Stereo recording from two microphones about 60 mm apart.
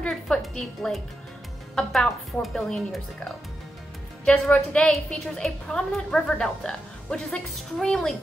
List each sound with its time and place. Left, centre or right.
0.1 s a woman's voice: centre
4.2 s a woman's voice: centre